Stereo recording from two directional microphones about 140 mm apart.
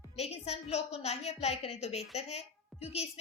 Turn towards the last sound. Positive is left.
turn(degrees=50)  # may be behind; listen again after turning